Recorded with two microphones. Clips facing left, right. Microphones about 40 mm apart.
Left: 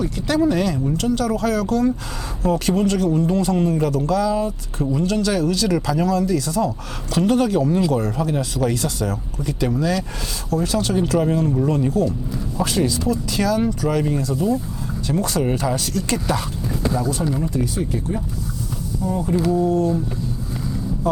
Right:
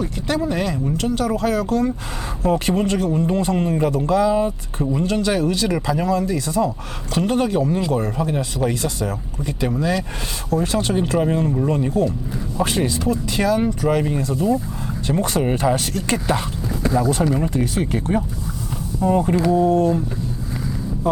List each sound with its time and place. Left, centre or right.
0.3 s a man's voice: centre; by 4.5 s right
4.8 s a man's voice: centre
10.5 s speech: right
16.9 s speech: right